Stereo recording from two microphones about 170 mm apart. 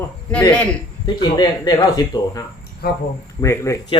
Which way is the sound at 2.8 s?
65° left (ahead or behind).